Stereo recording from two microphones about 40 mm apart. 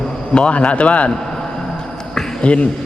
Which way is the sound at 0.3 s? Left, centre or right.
Left.